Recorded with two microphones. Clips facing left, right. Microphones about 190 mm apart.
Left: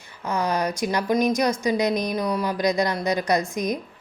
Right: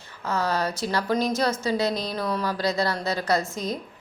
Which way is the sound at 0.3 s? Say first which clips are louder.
Left 2 dB; 15° left (ahead or behind).